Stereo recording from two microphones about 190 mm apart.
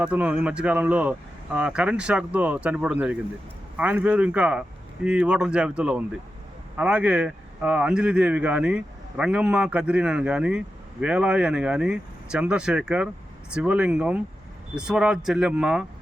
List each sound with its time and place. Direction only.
0.0 s speech: 5° right (ahead or behind)